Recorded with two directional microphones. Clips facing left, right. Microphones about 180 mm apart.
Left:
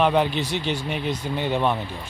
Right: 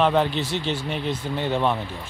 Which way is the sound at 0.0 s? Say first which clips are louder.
Even; 10° left (ahead or behind).